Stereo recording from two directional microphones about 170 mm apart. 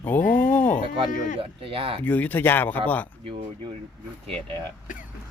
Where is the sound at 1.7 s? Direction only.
30° right (ahead or behind).